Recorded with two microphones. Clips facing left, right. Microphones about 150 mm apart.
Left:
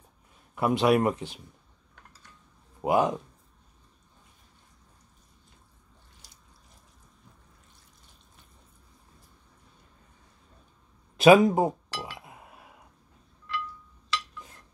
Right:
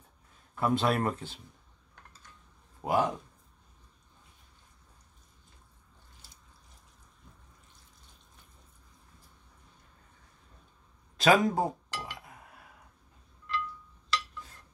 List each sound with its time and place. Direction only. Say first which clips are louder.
0.6 s speech: left 5 dB; 15° left (ahead or behind)
2.8 s speech: left 4 dB; 20° left (ahead or behind)
11.1 s chink: left 7 dB; 20° left (ahead or behind)